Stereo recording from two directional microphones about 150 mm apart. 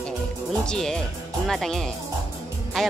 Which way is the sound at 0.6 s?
5° left (ahead or behind).